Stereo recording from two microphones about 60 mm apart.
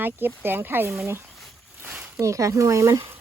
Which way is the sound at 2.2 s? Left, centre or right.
Right.